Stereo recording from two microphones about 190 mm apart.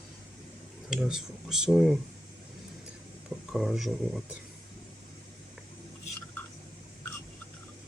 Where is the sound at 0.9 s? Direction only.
5° right (ahead or behind).